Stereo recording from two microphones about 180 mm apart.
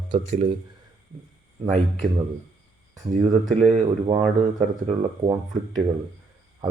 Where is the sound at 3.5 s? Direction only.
40° right (ahead or behind).